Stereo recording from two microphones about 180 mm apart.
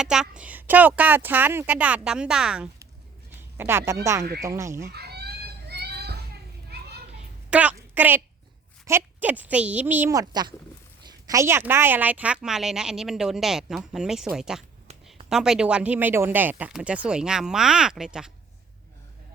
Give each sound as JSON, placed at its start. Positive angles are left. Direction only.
{"t": 0.0, "sound": "a woman's voice", "side_deg": -5}
{"t": 3.2, "sound": "a sound", "side_deg": -15}
{"t": 4.0, "sound": "a woman's voice", "side_deg": -15}
{"t": 4.9, "sound": "children playing", "side_deg": -65}
{"t": 7.5, "sound": "a woman's voice", "side_deg": -10}